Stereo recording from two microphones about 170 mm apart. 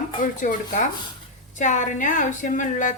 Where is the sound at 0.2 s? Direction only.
50° left (ahead or behind).